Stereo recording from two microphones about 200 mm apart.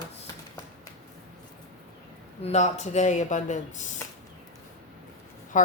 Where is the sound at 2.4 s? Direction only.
35° left (ahead or behind).